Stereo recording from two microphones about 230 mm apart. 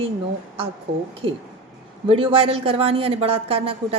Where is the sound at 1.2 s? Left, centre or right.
Right.